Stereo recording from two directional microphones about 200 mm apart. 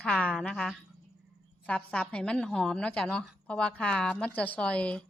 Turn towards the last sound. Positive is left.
turn(degrees=5)  # may be behind; listen again after turning